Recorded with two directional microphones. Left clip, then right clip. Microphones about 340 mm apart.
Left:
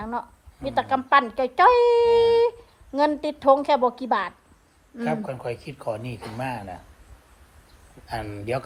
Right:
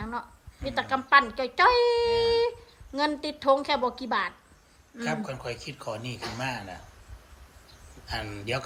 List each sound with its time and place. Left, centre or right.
0.0 s a woman's voice: centre
5.0 s speech: centre
8.0 s speech: centre